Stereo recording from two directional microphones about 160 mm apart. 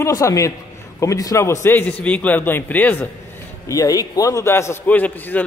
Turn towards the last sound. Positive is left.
turn(degrees=10)  # may be behind; listen again after turning